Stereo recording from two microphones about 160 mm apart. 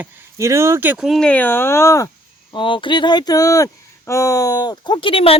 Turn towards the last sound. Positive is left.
turn(degrees=35)  # may be behind; listen again after turning